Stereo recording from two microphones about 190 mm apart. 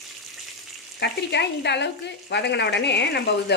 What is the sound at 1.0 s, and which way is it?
Speech, 65° left (ahead or behind).